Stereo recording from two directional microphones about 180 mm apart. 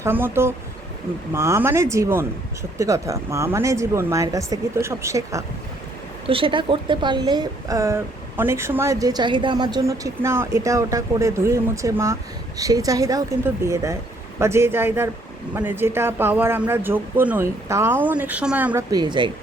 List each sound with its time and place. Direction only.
0.0 s a woman's voice: 10° right (ahead or behind)
6.2 s a woman's voice: 30° right (ahead or behind); by 18.9 s 10° right (ahead or behind)
18.9 s a woman's voice: 25° right (ahead or behind)